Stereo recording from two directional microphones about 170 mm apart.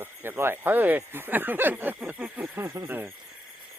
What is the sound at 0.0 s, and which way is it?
Speech, 15° right (ahead or behind).